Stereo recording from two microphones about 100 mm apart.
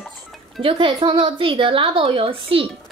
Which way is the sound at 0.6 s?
60° right (ahead or behind).